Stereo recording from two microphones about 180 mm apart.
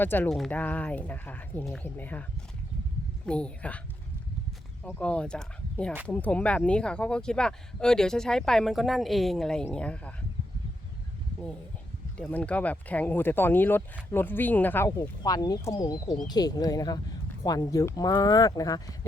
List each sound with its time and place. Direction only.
0.0 s speech: 10° left (ahead or behind)
3.2 s speech: 5° left (ahead or behind)
4.8 s speech: 10° left (ahead or behind)
12.1 s speech: 5° left (ahead or behind)